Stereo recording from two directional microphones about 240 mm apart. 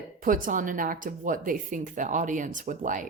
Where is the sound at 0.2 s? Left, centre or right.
Right.